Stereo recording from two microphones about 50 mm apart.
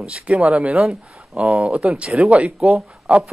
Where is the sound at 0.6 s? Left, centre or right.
Centre.